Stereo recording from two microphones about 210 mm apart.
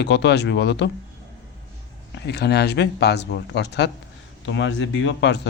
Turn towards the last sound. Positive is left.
turn(degrees=55)  # may be behind; listen again after turning